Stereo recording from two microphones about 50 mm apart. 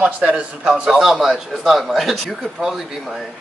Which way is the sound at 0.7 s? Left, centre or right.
Centre.